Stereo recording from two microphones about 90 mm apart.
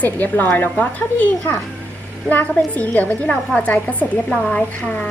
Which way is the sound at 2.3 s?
20° left (ahead or behind).